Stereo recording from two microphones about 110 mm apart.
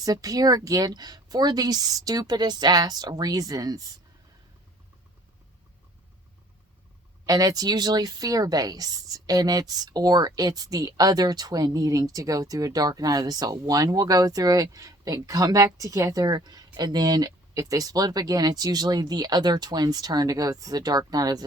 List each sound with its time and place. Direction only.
0.0 s speech: 35° right (ahead or behind)
7.3 s speech: 35° right (ahead or behind)